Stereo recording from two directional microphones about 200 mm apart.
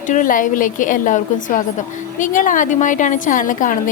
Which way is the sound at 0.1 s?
40° left (ahead or behind).